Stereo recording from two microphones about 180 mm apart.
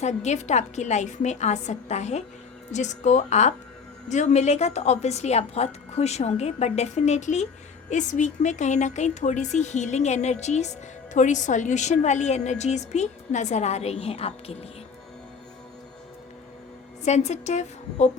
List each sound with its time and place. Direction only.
0.0 s a woman's voice: 40° left (ahead or behind)
17.0 s a woman's voice: 40° left (ahead or behind)